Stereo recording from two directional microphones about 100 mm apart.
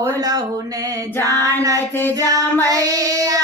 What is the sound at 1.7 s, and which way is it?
Child singing, 25° left (ahead or behind).